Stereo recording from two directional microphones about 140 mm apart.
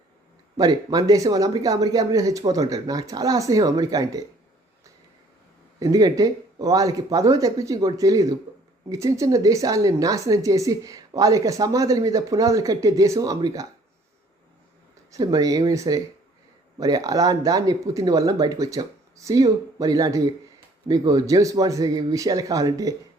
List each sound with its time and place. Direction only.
0.5 s a woman's voice: 30° right (ahead or behind)
5.8 s a woman's voice: 25° right (ahead or behind)
15.1 s a woman's voice: 25° right (ahead or behind)